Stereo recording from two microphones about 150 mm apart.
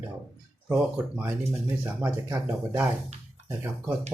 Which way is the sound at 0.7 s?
10° right (ahead or behind).